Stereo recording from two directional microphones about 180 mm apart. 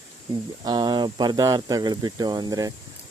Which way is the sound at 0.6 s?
25° right (ahead or behind).